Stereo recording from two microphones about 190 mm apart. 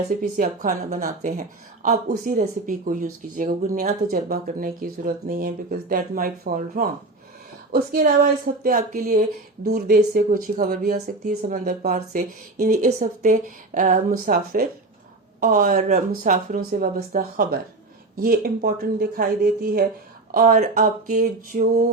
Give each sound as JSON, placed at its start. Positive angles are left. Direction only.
{"t": 0.2, "sound": "speech", "side_deg": -45}